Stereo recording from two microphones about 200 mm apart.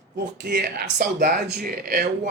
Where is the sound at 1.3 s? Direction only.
55° right (ahead or behind).